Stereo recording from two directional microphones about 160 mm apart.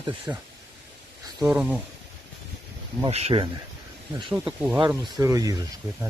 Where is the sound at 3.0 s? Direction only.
40° right (ahead or behind).